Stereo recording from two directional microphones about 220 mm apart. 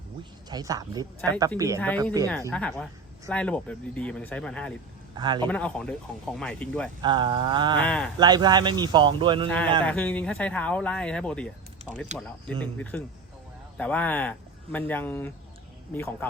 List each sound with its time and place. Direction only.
0.5 s speech: 15° right (ahead or behind)
2.5 s speech: 5° left (ahead or behind)
5.1 s speech: 20° right (ahead or behind)
5.5 s speech: 5° left (ahead or behind)
7.0 s speech: 20° right (ahead or behind)
7.8 s speech: 5° left (ahead or behind)
8.2 s speech: 20° right (ahead or behind)
9.8 s speech: 5° left (ahead or behind)